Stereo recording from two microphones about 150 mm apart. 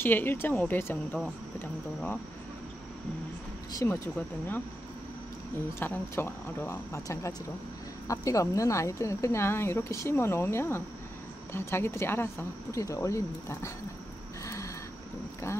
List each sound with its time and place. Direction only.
0.0 s speech: 15° left (ahead or behind)
3.7 s speech: 20° left (ahead or behind)
5.8 s speech: 15° left (ahead or behind)
14.4 s a sound: 20° left (ahead or behind)